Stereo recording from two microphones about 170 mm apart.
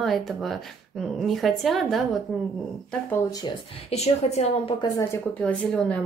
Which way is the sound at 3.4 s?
40° left (ahead or behind).